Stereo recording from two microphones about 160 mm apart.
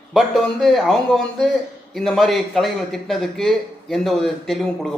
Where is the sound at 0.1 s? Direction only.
Centre (ahead or behind).